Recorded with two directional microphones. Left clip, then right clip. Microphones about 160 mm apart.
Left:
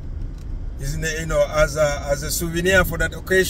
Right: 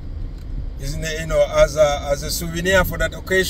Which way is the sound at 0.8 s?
25° left (ahead or behind).